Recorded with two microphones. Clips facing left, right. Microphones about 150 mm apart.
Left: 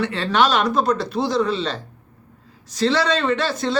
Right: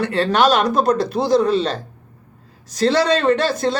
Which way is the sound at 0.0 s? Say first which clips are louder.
Right 3 dB; 45° right (ahead or behind).